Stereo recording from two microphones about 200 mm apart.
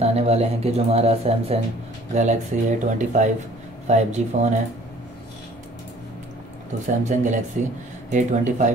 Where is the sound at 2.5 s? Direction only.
40° right (ahead or behind).